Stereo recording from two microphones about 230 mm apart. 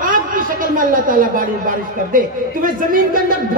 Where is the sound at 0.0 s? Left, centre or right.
Right.